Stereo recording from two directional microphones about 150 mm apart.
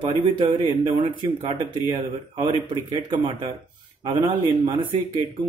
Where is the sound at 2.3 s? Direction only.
30° right (ahead or behind).